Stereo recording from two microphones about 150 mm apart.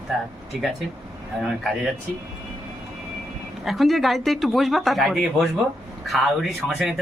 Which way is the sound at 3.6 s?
Centre (ahead or behind).